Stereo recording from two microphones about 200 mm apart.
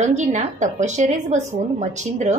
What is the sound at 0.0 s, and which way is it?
A woman's voice, 35° right (ahead or behind).